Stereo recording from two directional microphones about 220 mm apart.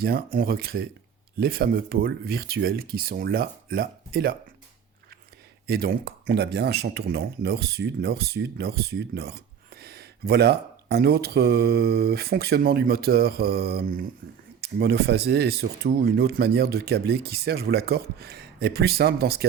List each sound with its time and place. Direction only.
0.0 s speech: 40° right (ahead or behind)
5.6 s speech: 45° right (ahead or behind)